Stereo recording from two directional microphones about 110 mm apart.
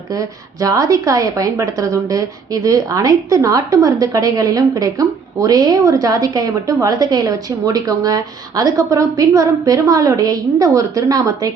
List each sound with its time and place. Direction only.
0.2 s a woman's voice: 30° right (ahead or behind)